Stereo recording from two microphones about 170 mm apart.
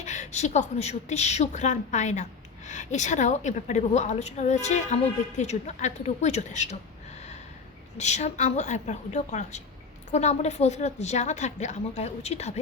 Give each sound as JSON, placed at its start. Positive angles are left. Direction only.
{"t": 0.0, "sound": "a woman's voice", "side_deg": 45}
{"t": 7.9, "sound": "a woman's voice", "side_deg": 40}